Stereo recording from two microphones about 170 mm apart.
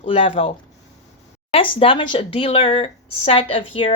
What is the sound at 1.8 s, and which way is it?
Speech, 30° left (ahead or behind).